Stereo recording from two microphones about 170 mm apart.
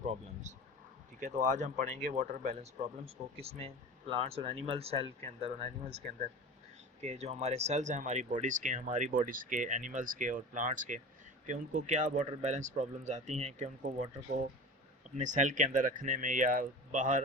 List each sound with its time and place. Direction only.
0.0 s a sound: 40° right (ahead or behind)
1.5 s speech: 45° right (ahead or behind)
7.0 s speech: 40° right (ahead or behind)